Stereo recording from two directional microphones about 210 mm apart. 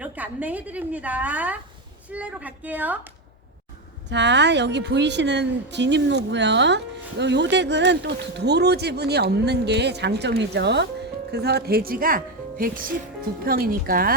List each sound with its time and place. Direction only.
0.0 s a woman's voice: 5° right (ahead or behind)
4.1 s a woman's voice: 55° right (ahead or behind)